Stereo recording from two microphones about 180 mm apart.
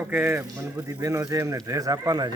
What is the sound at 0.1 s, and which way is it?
Speech, 10° right (ahead or behind).